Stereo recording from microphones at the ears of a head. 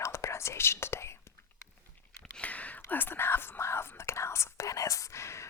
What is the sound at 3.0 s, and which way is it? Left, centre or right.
Whispering, left.